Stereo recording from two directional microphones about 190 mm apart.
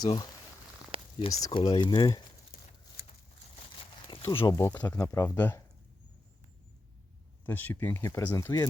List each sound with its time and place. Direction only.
0.0 s speech: 20° left (ahead or behind)
0.9 s a sound: 30° right (ahead or behind)
1.3 s speech: 20° left (ahead or behind)
4.0 s a sound: 25° left (ahead or behind)
4.4 s speech: 20° left (ahead or behind)
7.4 s speech: 10° left (ahead or behind)